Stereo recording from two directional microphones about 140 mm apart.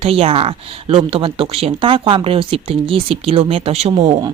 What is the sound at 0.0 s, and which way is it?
Speech, 45° right (ahead or behind).